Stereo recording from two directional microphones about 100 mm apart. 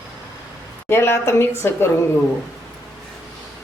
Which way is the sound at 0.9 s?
25° left (ahead or behind).